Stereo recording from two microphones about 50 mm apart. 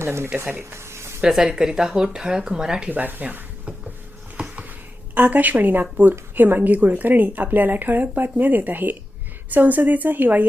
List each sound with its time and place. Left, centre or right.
0.0 s speech: right
0.7 s a sound: right
1.2 s speech: centre
2.9 s a woman's voice: right
4.4 s a sound: right
5.1 s a woman's voice: right